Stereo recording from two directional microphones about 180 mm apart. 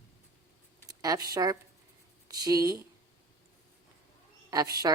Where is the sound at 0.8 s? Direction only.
20° right (ahead or behind).